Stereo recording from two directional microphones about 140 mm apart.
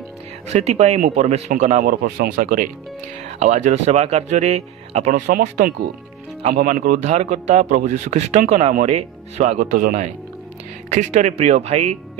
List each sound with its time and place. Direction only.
0.5 s speech: 50° right (ahead or behind); by 2.6 s 75° right (ahead or behind)
3.3 s speech: 55° right (ahead or behind)
6.5 s speech: 85° right
7.1 s speech: 55° right (ahead or behind)
10.9 s speech: 60° right (ahead or behind)